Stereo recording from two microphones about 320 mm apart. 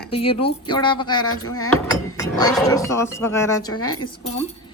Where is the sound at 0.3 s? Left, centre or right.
Centre.